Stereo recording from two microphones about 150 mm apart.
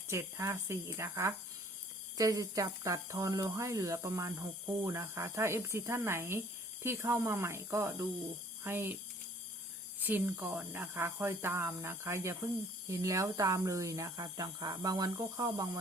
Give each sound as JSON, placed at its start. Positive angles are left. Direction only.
{"t": 0.1, "sound": "speech", "side_deg": -20}
{"t": 10.0, "sound": "speech", "side_deg": -10}